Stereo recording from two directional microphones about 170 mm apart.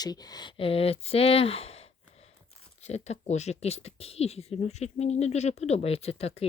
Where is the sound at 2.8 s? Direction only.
40° left (ahead or behind).